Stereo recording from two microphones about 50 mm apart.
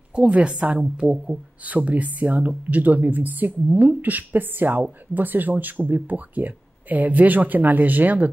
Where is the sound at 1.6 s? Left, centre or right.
Right.